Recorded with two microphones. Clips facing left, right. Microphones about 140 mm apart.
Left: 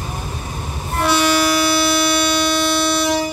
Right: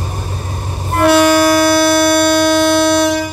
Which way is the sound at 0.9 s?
55° right (ahead or behind).